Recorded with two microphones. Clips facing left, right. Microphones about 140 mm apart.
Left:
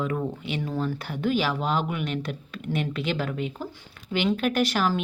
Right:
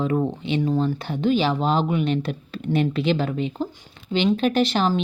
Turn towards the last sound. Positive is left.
turn(degrees=-25)  # may be behind; listen again after turning